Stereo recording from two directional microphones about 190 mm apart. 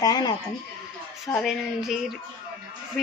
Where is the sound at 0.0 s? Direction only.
20° left (ahead or behind).